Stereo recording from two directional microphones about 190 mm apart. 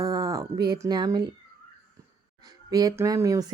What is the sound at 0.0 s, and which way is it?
Speech, 20° right (ahead or behind).